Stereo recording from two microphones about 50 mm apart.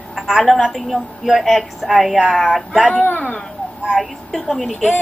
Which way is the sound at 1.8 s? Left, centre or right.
Centre.